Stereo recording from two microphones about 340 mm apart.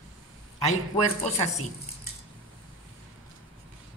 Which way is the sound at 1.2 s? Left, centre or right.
Centre.